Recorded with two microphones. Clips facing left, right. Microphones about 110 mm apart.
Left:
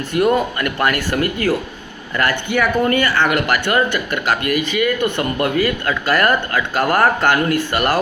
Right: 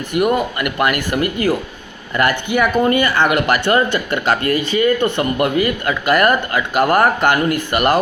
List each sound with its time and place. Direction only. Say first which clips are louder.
0.1 s speech: even; 15° right (ahead or behind); by 4.9 s 30° right (ahead or behind)
5.1 s speech: right 2 dB; 20° right (ahead or behind)